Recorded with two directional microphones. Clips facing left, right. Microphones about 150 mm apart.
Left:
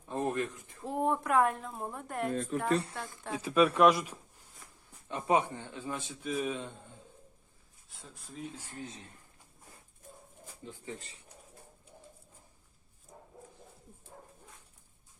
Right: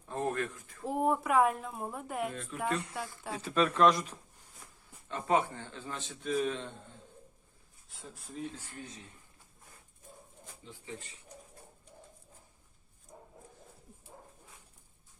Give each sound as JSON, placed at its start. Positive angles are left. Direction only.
{"t": 0.1, "sound": "a sound", "side_deg": 20}
{"t": 0.9, "sound": "a woman's voice", "side_deg": -5}
{"t": 2.3, "sound": "speech", "side_deg": 35}
{"t": 3.3, "sound": "a man's voice", "side_deg": 10}
{"t": 7.9, "sound": "a woman's voice", "side_deg": 0}
{"t": 10.6, "sound": "speech", "side_deg": 50}